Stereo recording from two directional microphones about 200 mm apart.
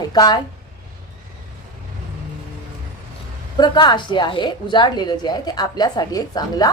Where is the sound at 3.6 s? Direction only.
20° left (ahead or behind).